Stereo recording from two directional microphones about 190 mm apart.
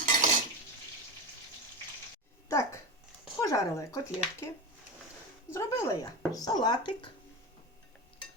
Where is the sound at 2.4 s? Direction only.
15° left (ahead or behind).